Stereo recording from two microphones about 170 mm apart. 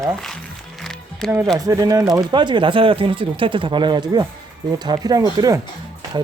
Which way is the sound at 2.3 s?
30° right (ahead or behind).